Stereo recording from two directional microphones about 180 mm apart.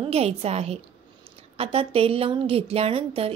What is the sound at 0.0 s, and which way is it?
A woman's voice, 35° right (ahead or behind).